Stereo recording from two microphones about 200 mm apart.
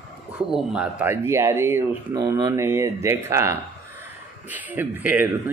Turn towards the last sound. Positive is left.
turn(degrees=-10)  # may be behind; listen again after turning